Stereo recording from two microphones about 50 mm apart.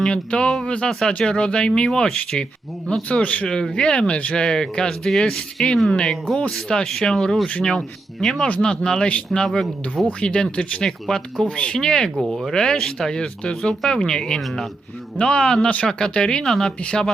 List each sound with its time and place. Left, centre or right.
0.0 s speech: centre
0.9 s speech: centre
3.1 s speech: left
3.4 s speech: centre
5.9 s speech: centre
14.4 s speech: centre
15.2 s speech: centre
16.4 s speech: centre